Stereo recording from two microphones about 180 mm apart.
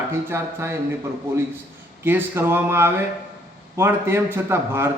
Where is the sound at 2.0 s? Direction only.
10° right (ahead or behind).